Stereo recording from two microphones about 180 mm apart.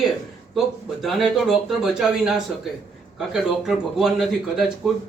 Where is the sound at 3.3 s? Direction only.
Centre (ahead or behind).